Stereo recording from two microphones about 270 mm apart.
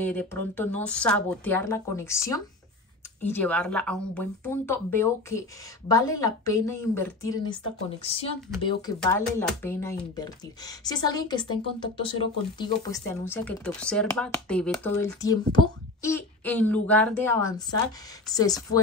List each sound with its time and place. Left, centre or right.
0.0 s speech: centre
9.0 s speech: centre